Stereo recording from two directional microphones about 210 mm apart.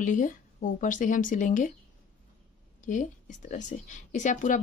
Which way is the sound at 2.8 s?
35° left (ahead or behind).